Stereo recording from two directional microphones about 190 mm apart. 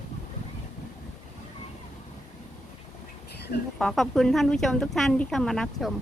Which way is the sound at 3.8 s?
Centre (ahead or behind).